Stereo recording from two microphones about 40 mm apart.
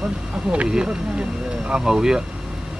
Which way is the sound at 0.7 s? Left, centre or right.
Right.